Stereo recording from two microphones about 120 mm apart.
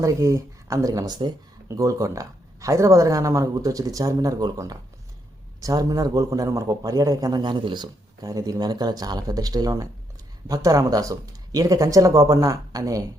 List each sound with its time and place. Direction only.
0.0 s a man's voice: 25° right (ahead or behind)